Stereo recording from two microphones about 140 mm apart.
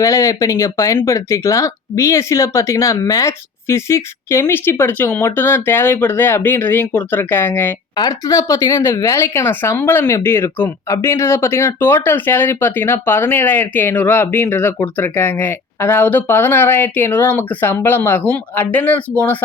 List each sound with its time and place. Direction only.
0.0 s speech: 25° left (ahead or behind)
7.9 s speech: 25° left (ahead or behind); by 19.0 s 10° left (ahead or behind)